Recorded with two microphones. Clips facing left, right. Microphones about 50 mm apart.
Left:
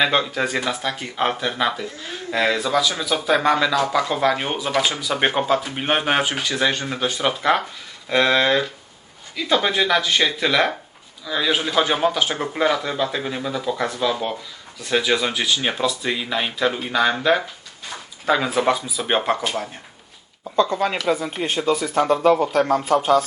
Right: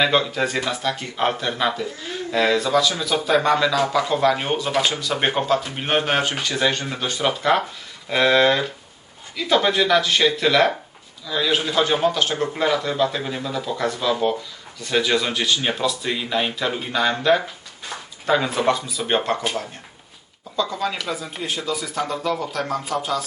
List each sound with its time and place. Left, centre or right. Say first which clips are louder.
0.0 s a man's voice: even; centre
20.6 s speech: left 4 dB; left